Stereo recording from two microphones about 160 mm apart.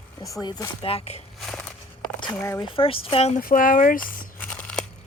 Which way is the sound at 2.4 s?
15° left (ahead or behind).